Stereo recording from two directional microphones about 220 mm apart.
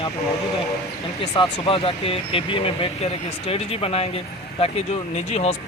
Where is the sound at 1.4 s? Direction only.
25° left (ahead or behind).